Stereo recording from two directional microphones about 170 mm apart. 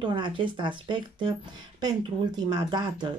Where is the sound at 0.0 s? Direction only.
30° right (ahead or behind).